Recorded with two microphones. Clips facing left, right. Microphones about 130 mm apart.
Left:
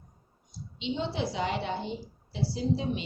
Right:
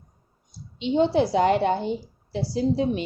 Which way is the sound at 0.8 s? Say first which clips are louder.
Right 11 dB; 50° right (ahead or behind).